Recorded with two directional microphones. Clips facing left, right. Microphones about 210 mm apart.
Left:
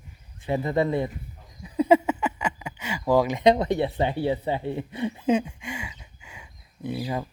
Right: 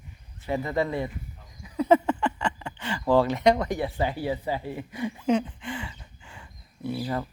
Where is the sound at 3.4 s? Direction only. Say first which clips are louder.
Left 3 dB; 20° left (ahead or behind).